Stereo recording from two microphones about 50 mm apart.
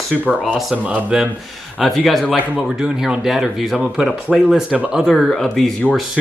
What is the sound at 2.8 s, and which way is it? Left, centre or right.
Speech, centre.